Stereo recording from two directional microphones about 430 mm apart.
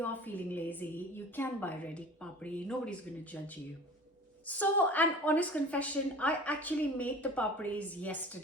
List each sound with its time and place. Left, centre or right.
0.0 s a woman's voice: centre
4.4 s a woman's voice: centre